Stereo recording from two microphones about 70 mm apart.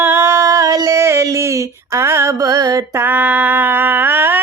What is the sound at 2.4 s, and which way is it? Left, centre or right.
Music, right.